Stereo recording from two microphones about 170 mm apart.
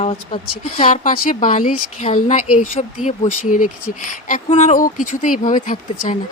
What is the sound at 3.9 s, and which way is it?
A woman's voice, 45° left (ahead or behind).